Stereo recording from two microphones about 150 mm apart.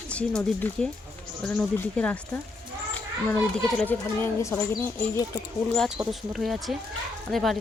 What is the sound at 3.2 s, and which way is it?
Speech, 10° left (ahead or behind).